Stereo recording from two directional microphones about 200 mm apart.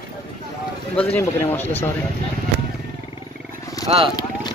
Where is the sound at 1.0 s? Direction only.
10° left (ahead or behind).